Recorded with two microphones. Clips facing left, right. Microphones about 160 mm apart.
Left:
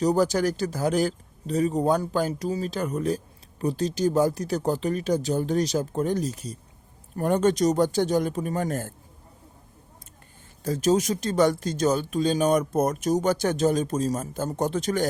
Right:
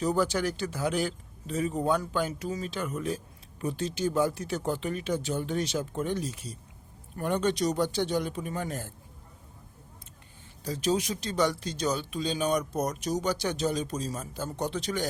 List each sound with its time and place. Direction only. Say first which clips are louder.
0.0 s speech: left 5 dB; 40° left (ahead or behind)
10.6 s speech: left 6 dB; 45° left (ahead or behind)